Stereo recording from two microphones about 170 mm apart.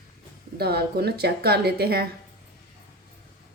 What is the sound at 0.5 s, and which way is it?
A woman's voice, 70° right (ahead or behind).